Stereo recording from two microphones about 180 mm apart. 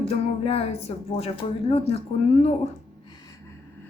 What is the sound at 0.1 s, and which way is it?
Music, 35° left (ahead or behind).